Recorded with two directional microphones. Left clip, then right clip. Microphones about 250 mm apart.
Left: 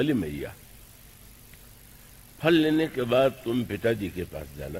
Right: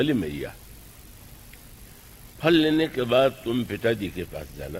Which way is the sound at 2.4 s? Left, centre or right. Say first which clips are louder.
Right 2 dB; right.